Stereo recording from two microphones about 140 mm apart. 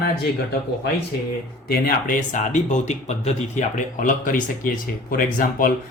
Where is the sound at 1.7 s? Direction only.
85° left.